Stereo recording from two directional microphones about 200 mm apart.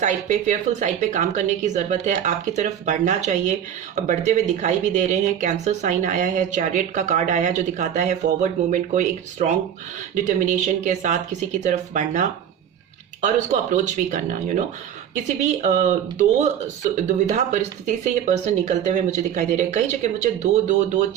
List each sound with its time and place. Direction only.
0.0 s speech: 35° right (ahead or behind)